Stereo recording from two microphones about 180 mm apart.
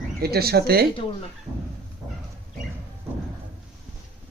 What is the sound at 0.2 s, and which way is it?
Speech, 60° right (ahead or behind).